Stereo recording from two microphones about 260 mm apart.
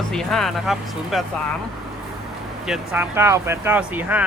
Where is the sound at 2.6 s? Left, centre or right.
Centre.